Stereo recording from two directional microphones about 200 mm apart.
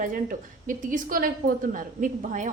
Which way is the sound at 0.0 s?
45° right (ahead or behind).